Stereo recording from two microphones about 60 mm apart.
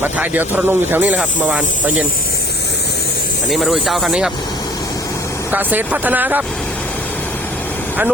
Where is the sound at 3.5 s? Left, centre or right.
Centre.